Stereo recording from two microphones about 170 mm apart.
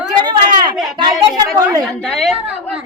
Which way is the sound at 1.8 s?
5° left (ahead or behind).